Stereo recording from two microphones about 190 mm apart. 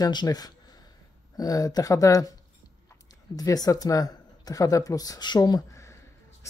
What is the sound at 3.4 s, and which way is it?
Speech, 20° left (ahead or behind).